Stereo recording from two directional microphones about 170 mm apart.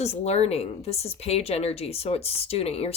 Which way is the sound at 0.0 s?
40° left (ahead or behind).